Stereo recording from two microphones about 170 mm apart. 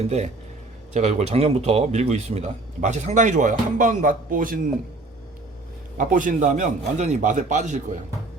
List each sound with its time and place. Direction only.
0.0 s speech: 40° right (ahead or behind)
6.0 s speech: 50° right (ahead or behind)